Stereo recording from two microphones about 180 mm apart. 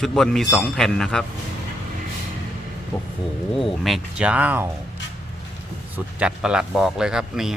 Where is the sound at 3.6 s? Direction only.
Centre (ahead or behind).